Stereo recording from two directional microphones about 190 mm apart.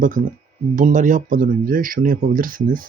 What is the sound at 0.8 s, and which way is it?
Speech, 45° right (ahead or behind).